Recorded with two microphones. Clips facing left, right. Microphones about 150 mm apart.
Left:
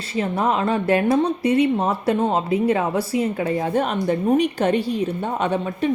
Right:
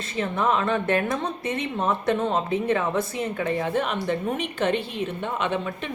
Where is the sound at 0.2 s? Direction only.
35° left (ahead or behind).